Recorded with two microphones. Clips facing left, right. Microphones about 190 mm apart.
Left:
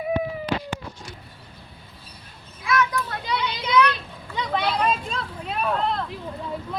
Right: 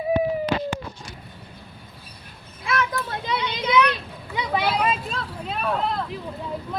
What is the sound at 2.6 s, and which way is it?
Children playing, 30° right (ahead or behind).